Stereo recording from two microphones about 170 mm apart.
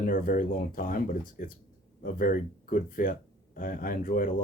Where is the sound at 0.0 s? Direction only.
55° left (ahead or behind).